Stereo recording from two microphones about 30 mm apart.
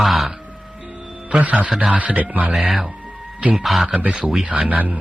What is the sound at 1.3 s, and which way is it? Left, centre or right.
Speech, right.